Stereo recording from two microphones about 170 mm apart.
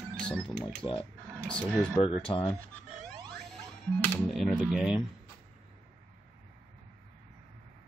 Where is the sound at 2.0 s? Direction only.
25° left (ahead or behind).